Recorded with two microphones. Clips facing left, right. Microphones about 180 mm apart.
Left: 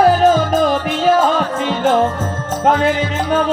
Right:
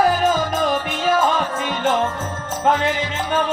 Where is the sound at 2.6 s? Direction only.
35° left (ahead or behind).